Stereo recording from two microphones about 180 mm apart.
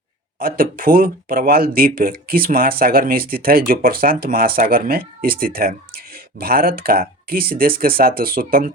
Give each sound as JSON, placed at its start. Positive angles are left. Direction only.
{"t": 0.3, "sound": "speech", "side_deg": -55}